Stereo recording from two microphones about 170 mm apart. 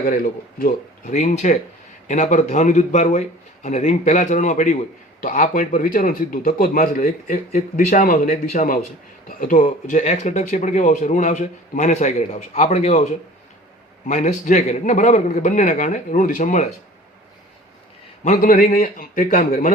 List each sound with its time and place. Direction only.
0.0 s a man's voice: 60° left (ahead or behind)
1.0 s a man's voice: 45° left (ahead or behind)
18.3 s a man's voice: 55° left (ahead or behind)